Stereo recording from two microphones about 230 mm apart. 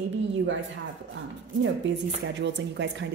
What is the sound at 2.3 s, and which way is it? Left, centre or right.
Speech, right.